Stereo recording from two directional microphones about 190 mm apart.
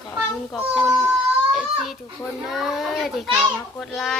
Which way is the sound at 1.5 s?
Centre (ahead or behind).